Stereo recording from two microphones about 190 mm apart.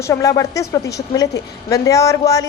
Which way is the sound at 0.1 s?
20° left (ahead or behind).